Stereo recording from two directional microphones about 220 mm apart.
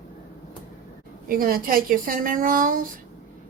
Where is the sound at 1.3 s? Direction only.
40° right (ahead or behind).